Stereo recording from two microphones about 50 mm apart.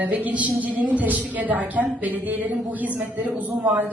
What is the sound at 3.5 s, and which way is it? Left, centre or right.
Speech, right.